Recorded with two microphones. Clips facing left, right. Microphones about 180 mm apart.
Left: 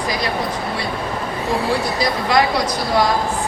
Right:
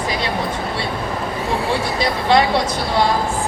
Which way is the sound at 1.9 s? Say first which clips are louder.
Right 3 dB; 30° right (ahead or behind).